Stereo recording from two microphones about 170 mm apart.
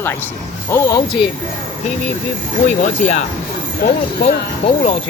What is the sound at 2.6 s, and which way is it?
Speech, 45° left (ahead or behind).